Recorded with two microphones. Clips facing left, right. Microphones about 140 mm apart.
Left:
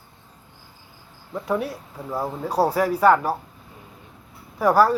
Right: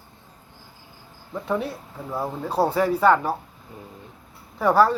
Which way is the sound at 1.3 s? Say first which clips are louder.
Left 1 dB; 5° left (ahead or behind).